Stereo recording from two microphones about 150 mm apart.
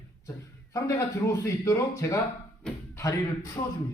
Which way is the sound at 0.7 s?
20° left (ahead or behind).